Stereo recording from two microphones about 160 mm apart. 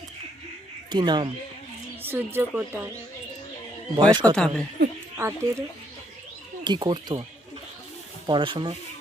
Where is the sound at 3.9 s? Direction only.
30° right (ahead or behind).